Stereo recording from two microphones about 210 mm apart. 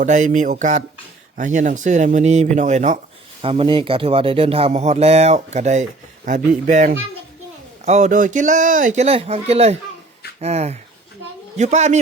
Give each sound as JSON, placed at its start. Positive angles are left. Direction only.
{"t": 0.0, "sound": "speech", "side_deg": -35}